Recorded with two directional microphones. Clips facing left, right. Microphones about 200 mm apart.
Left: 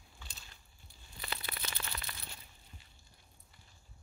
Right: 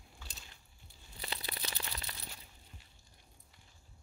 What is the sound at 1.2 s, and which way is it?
Crumpling, 30° right (ahead or behind).